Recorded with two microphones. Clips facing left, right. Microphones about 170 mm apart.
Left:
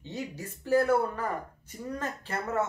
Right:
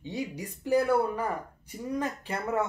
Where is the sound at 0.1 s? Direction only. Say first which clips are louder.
Right 2 dB; 15° right (ahead or behind).